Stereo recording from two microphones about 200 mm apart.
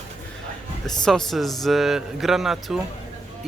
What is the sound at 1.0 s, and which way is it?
Speech, centre (ahead or behind).